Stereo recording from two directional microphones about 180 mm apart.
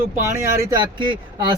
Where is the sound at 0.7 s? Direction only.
25° right (ahead or behind).